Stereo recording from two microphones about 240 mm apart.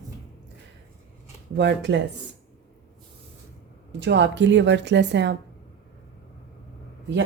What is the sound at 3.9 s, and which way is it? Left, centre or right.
A woman's voice, right.